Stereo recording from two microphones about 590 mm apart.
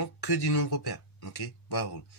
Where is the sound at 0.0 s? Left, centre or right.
Left.